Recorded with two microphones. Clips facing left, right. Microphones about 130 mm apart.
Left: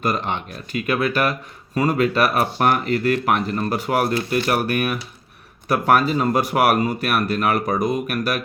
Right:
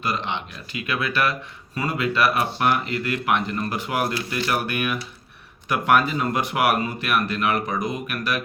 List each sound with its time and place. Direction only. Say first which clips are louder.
0.0 s speech: left 4 dB; 45° left (ahead or behind)